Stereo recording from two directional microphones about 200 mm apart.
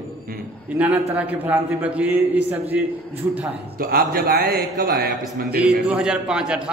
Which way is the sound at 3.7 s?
45° right (ahead or behind).